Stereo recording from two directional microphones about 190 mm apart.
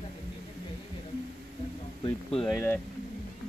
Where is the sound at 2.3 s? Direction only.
5° left (ahead or behind).